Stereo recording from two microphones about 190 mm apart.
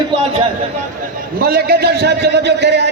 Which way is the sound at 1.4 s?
55° right (ahead or behind).